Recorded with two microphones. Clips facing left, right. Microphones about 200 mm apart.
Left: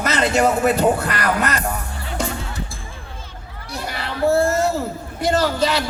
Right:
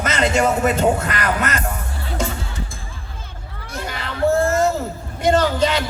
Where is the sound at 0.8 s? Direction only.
35° left (ahead or behind).